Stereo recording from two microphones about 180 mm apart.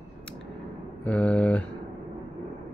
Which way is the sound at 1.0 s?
10° left (ahead or behind).